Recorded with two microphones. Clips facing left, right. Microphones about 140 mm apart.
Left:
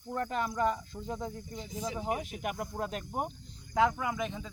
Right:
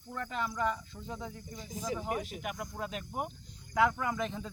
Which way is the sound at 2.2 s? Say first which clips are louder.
Left 3 dB; 45° left (ahead or behind).